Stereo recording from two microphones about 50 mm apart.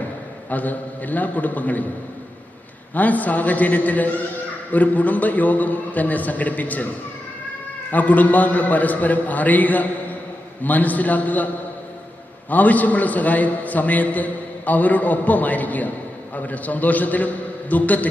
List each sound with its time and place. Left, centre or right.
0.5 s a man's voice: left
2.9 s a man's voice: left
7.9 s a man's voice: left
12.5 s a man's voice: left